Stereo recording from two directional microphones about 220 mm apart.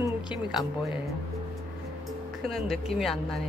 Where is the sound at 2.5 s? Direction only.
Centre (ahead or behind).